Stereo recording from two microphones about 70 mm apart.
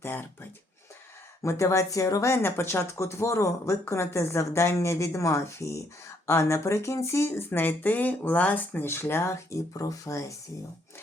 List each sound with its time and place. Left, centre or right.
0.0 s speech: left
1.4 s speech: left
2.3 s speech: left